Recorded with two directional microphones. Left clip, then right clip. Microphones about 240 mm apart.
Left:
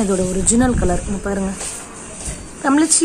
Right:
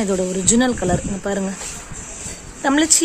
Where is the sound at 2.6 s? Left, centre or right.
Centre.